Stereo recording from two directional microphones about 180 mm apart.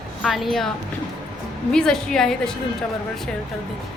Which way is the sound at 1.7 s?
5° left (ahead or behind).